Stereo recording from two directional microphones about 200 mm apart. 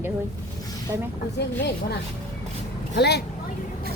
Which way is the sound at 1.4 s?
55° left (ahead or behind).